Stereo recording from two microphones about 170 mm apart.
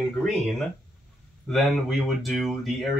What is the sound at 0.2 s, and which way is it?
Speech, centre (ahead or behind).